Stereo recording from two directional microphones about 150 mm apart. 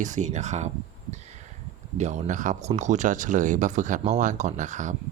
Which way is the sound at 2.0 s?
50° right (ahead or behind).